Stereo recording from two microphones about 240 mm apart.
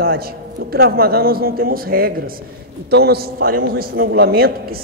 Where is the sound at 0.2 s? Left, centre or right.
Right.